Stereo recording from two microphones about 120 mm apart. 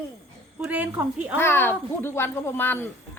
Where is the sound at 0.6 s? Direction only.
15° right (ahead or behind).